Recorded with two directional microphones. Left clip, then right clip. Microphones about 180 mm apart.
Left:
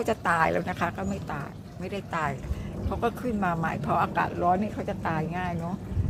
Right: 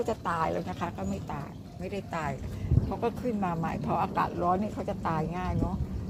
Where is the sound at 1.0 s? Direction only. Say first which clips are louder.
Left 3 dB; 15° left (ahead or behind).